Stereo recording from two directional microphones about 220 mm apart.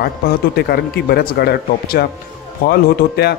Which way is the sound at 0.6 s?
45° left (ahead or behind).